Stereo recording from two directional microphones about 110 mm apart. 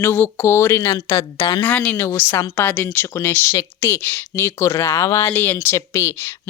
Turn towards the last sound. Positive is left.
turn(degrees=25)  # may be behind; listen again after turning